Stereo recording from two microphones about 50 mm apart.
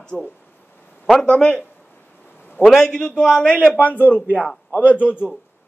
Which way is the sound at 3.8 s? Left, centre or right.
Left.